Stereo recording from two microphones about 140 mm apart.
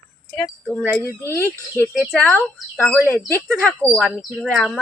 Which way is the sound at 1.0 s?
15° left (ahead or behind).